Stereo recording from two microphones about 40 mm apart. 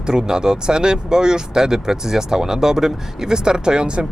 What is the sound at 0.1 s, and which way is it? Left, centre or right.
Speech, centre.